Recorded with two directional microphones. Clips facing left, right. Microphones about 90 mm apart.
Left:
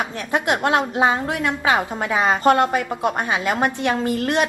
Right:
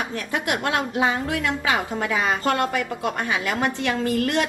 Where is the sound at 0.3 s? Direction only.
25° left (ahead or behind).